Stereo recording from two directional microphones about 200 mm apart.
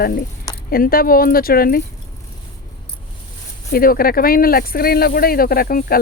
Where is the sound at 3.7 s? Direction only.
45° left (ahead or behind).